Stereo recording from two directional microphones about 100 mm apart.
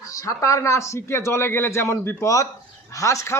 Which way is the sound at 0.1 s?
30° left (ahead or behind).